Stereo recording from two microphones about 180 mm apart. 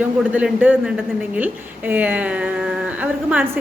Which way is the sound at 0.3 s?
10° right (ahead or behind).